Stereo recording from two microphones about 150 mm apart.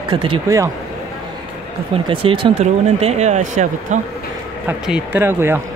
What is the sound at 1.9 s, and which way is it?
Speech, 35° right (ahead or behind).